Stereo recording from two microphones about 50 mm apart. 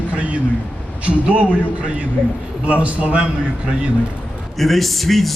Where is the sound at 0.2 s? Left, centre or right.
Right.